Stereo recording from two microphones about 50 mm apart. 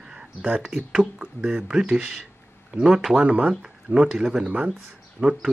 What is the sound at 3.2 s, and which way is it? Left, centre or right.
Mantra, right.